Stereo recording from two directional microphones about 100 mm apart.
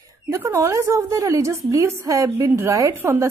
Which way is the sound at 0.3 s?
30° right (ahead or behind).